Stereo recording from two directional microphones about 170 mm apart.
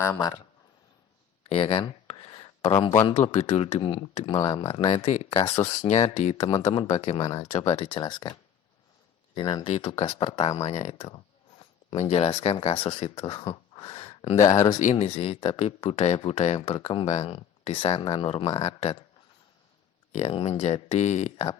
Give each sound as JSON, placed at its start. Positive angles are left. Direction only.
{"t": 0.0, "sound": "speech", "side_deg": 20}
{"t": 1.5, "sound": "a sound", "side_deg": 35}
{"t": 3.1, "sound": "speech", "side_deg": 40}
{"t": 14.8, "sound": "speech", "side_deg": 40}
{"t": 20.1, "sound": "speech", "side_deg": 35}